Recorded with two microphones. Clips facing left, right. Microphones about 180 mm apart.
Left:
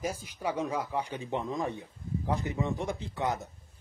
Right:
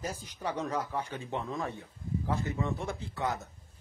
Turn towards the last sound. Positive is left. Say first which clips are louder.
# left 2 dB
turn(degrees=20)  # may be behind; listen again after turning